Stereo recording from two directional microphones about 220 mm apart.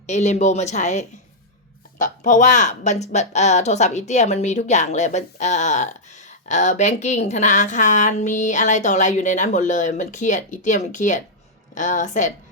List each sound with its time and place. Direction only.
0.1 s a woman's voice: 30° left (ahead or behind)